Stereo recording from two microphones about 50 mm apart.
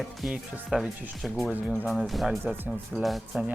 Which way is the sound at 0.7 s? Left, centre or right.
Centre.